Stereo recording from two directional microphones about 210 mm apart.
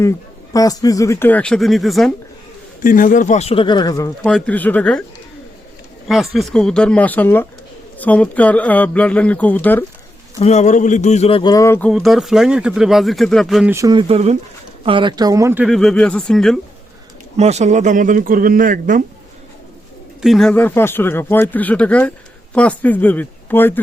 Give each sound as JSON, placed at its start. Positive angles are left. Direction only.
{"t": 0.5, "sound": "speech", "side_deg": 15}
{"t": 2.8, "sound": "speech", "side_deg": 40}
{"t": 4.2, "sound": "speech", "side_deg": 5}
{"t": 6.1, "sound": "speech", "side_deg": 0}
{"t": 10.4, "sound": "a man's voice", "side_deg": 35}
{"t": 11.9, "sound": "speech", "side_deg": 0}
{"t": 13.7, "sound": "speech", "side_deg": -15}
{"t": 14.1, "sound": "speech", "side_deg": -30}
{"t": 17.3, "sound": "speech", "side_deg": -30}
{"t": 20.2, "sound": "speech", "side_deg": 0}